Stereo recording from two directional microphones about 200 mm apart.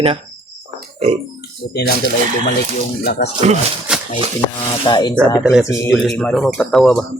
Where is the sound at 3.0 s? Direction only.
55° left (ahead or behind).